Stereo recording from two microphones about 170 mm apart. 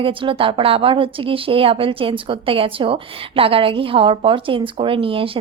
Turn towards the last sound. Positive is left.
turn(degrees=-30)  # may be behind; listen again after turning